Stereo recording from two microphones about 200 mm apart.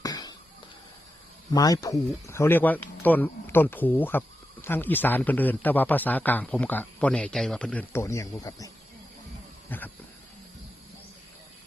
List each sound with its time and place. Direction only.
0.0 s a sound: 20° left (ahead or behind)
1.5 s a man's voice: 20° left (ahead or behind)
9.6 s wild animals: 10° left (ahead or behind)